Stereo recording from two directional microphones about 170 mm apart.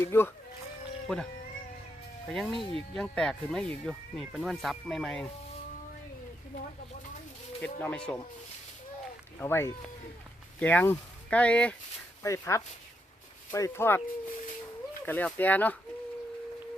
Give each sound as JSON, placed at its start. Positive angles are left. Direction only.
{"t": 0.0, "sound": "speech", "side_deg": 15}
{"t": 1.0, "sound": "speech", "side_deg": 0}
{"t": 2.3, "sound": "speech", "side_deg": 0}
{"t": 7.6, "sound": "speech", "side_deg": 10}
{"t": 9.4, "sound": "speech", "side_deg": 15}
{"t": 12.2, "sound": "speech", "side_deg": 15}
{"t": 15.0, "sound": "speech", "side_deg": 10}